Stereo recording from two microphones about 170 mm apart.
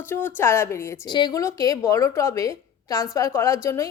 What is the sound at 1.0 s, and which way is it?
A woman's voice, 25° left (ahead or behind).